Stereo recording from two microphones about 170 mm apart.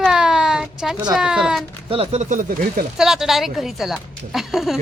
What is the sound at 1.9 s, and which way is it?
Speech, 35° right (ahead or behind).